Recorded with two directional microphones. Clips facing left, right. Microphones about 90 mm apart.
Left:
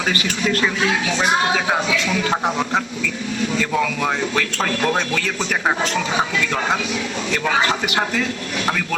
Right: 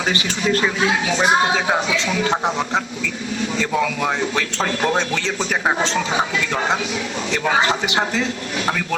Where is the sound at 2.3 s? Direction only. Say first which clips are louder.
Even; 10° left (ahead or behind).